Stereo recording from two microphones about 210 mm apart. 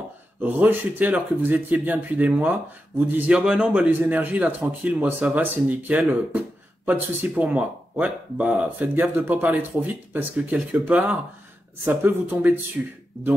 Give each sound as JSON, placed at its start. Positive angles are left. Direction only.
{"t": 0.4, "sound": "speech", "side_deg": -10}